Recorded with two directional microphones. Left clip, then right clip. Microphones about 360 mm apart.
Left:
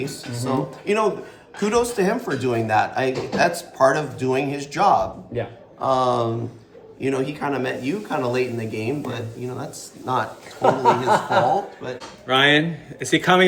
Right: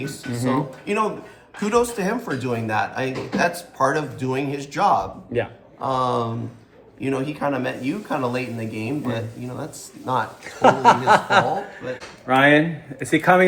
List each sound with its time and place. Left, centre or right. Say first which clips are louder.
0.0 s speech: right 2 dB; centre
10.6 s chuckle: right 3 dB; right
12.2 s speech: right 1 dB; centre